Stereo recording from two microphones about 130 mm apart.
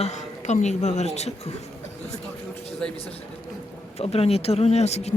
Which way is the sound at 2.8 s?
10° left (ahead or behind).